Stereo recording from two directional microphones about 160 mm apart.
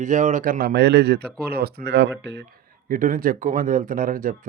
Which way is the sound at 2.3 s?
65° right (ahead or behind).